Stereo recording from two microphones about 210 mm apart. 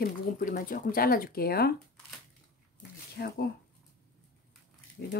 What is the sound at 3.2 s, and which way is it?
Speech, 50° left (ahead or behind).